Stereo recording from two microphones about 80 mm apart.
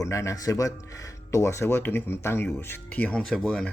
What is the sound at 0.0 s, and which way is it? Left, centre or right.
Speech, left.